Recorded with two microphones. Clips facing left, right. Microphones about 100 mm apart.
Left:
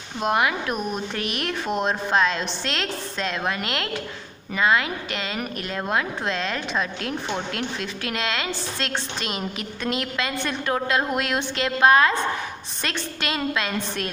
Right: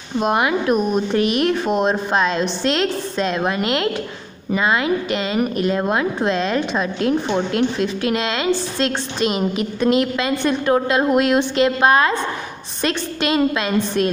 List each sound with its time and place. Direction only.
0.2 s a woman's voice: 25° right (ahead or behind)